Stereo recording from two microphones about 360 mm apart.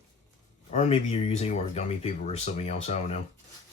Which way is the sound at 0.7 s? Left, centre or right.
Centre.